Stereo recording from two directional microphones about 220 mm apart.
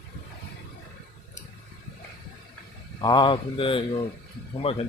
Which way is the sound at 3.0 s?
20° left (ahead or behind).